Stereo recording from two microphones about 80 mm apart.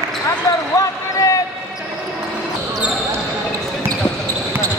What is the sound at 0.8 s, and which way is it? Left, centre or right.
Basketball bounce, left.